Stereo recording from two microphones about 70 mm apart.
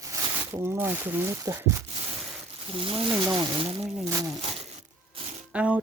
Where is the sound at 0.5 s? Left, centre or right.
Right.